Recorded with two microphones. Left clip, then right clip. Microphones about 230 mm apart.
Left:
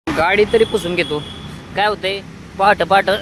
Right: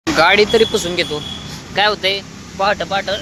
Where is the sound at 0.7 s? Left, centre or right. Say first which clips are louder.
Even; centre.